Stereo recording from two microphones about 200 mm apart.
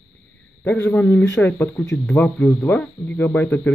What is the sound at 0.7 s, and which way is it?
A man's voice, 10° left (ahead or behind).